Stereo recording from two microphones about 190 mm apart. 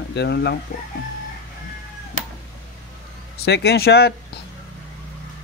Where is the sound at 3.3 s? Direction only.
60° left (ahead or behind).